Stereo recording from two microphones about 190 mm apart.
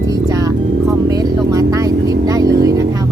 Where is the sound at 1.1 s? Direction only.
20° right (ahead or behind).